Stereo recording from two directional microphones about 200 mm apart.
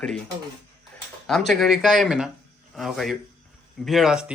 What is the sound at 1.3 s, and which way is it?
Speech, centre (ahead or behind).